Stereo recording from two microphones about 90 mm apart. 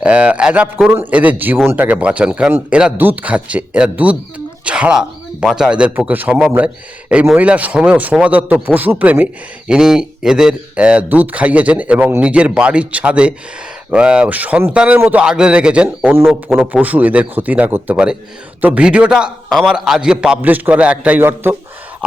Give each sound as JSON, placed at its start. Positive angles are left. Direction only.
{"t": 0.0, "sound": "a man's voice", "side_deg": -15}
{"t": 19.5, "sound": "a man's voice", "side_deg": 0}